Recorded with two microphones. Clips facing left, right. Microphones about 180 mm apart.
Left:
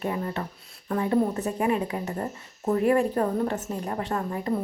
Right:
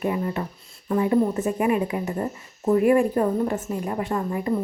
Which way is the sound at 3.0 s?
15° right (ahead or behind).